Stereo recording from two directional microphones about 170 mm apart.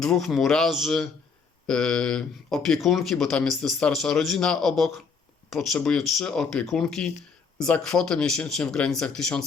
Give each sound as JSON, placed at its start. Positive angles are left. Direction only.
{"t": 0.0, "sound": "speech", "side_deg": 0}